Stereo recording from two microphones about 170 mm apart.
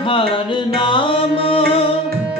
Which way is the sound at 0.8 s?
30° left (ahead or behind).